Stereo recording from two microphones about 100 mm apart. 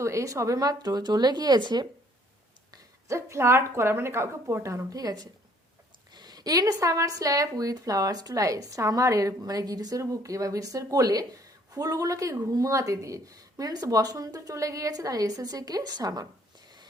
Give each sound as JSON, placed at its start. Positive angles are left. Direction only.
{"t": 0.0, "sound": "speech", "side_deg": -30}
{"t": 2.7, "sound": "speech", "side_deg": -30}